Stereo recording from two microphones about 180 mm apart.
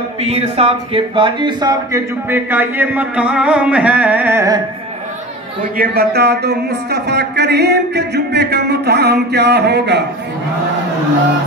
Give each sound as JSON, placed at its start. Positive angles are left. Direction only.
{"t": 0.2, "sound": "speech", "side_deg": -35}
{"t": 5.8, "sound": "speech", "side_deg": -60}